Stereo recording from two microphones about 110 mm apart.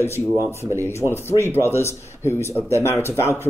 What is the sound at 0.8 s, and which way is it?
Speech, 20° left (ahead or behind).